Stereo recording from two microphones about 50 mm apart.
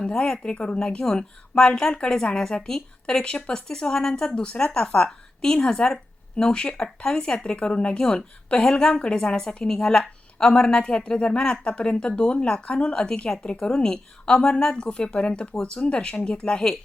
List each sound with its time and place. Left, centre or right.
0.0 s a woman's voice: centre